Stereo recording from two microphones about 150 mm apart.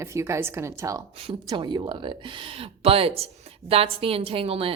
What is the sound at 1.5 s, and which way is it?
Speech, 30° right (ahead or behind).